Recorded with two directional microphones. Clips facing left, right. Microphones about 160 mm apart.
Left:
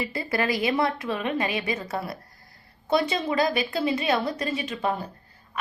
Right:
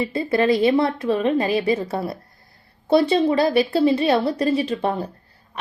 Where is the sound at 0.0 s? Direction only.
25° right (ahead or behind).